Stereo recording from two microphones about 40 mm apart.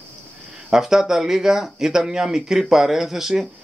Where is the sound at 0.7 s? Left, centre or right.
Centre.